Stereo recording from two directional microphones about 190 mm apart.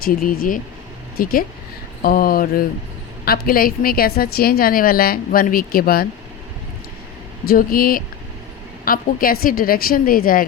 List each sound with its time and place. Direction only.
0.0 s a woman's voice: 50° left (ahead or behind)
7.4 s a woman's voice: 50° left (ahead or behind)